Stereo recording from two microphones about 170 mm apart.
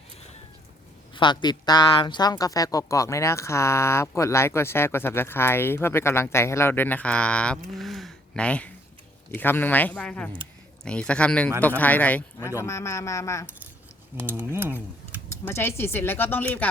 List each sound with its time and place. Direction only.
1.1 s speech: 25° left (ahead or behind)
14.2 s speech: 10° right (ahead or behind)
15.3 s speech: 15° left (ahead or behind)